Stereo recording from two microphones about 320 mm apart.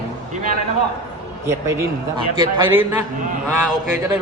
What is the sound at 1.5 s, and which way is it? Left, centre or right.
Speech, centre.